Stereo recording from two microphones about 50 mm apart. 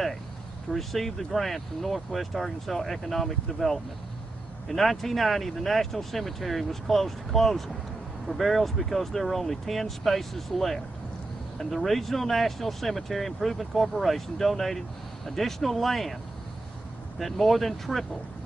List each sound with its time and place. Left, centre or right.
0.7 s speech: centre
17.2 s speech: centre